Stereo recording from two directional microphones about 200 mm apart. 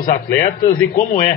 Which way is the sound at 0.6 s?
40° left (ahead or behind).